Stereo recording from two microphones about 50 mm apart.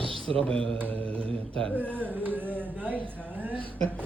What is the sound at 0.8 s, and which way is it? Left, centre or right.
Mantra, left.